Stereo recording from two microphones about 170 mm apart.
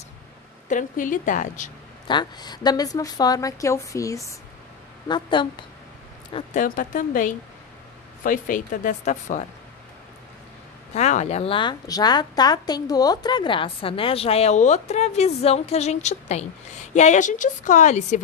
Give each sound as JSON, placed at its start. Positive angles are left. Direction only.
{"t": 0.7, "sound": "speech", "side_deg": 50}
{"t": 2.0, "sound": "a woman's voice", "side_deg": 25}
{"t": 6.5, "sound": "speech", "side_deg": 50}
{"t": 11.0, "sound": "a woman's voice", "side_deg": 40}